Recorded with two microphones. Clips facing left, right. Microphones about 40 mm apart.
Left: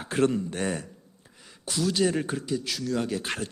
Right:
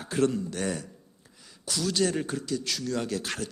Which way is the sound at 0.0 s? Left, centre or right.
Left.